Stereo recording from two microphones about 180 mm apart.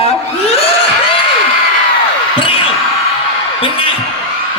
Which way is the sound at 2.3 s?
30° left (ahead or behind).